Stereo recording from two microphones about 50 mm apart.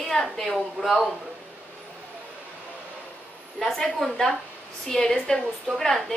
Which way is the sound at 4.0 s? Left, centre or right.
Centre.